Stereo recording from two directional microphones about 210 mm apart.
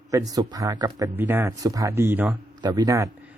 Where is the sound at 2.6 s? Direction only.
20° right (ahead or behind).